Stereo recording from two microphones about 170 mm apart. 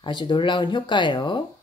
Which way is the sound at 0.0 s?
25° left (ahead or behind).